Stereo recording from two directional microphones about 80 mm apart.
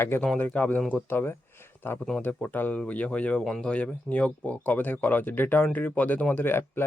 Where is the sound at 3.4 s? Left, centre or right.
Centre.